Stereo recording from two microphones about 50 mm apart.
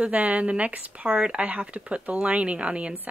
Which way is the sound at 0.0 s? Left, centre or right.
Right.